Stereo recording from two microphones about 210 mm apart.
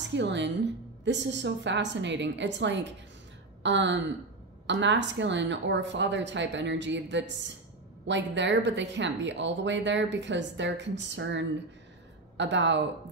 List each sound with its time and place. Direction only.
0.1 s speech: 60° right (ahead or behind)